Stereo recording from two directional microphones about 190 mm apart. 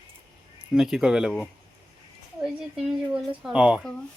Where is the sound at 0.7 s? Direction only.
5° right (ahead or behind).